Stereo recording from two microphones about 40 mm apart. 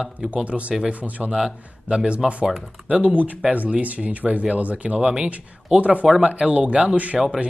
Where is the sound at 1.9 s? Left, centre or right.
Right.